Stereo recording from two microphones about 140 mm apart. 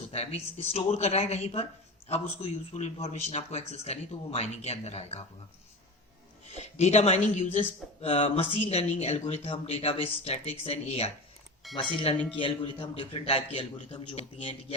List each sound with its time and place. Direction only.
0.1 s speech: 45° left (ahead or behind)
6.5 s a man's voice: 50° left (ahead or behind)